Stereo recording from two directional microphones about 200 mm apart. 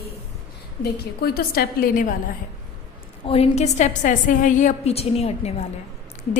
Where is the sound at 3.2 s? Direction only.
30° left (ahead or behind).